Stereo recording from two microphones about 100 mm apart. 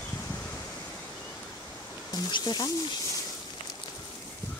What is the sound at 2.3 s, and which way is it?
Speech, 40° left (ahead or behind).